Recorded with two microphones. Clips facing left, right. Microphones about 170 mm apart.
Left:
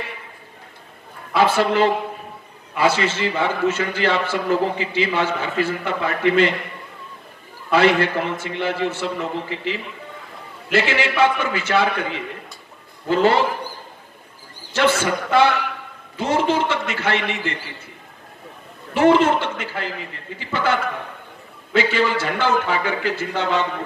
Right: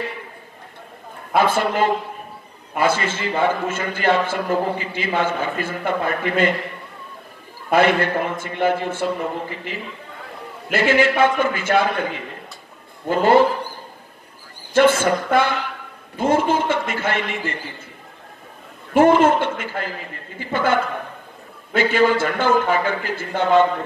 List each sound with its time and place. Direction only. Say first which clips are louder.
1.3 s a man's voice: left 1 dB; 50° right (ahead or behind)
7.7 s a man's voice: even; 50° right (ahead or behind)
13.1 s a man's voice: right 2 dB; 50° right (ahead or behind)
14.7 s a man's voice: right 4 dB; 50° right (ahead or behind)
18.9 s a man's voice: right 2 dB; 50° right (ahead or behind)